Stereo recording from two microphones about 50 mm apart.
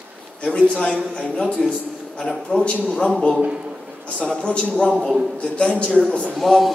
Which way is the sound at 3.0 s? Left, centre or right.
Centre.